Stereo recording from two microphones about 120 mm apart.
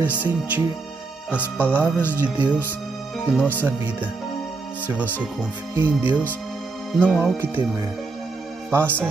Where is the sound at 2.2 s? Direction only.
15° right (ahead or behind).